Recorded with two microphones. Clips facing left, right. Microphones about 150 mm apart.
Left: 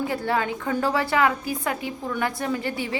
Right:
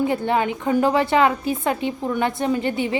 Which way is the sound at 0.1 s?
20° right (ahead or behind).